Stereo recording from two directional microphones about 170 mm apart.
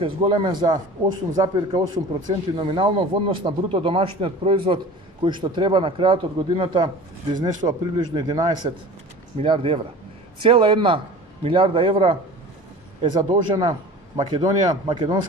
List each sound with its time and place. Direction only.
0.0 s speech: 35° right (ahead or behind)